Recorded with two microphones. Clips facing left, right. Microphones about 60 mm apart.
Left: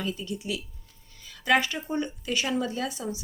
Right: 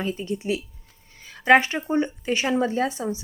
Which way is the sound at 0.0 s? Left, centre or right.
Right.